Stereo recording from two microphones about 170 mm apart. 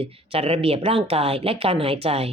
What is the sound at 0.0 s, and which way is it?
Speech, 35° right (ahead or behind).